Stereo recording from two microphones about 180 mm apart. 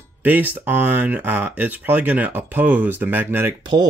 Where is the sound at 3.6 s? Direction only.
25° right (ahead or behind).